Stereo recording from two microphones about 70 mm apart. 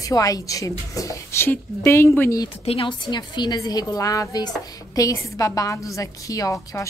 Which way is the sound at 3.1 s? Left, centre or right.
Left.